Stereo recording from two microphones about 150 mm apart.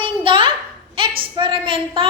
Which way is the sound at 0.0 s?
35° right (ahead or behind).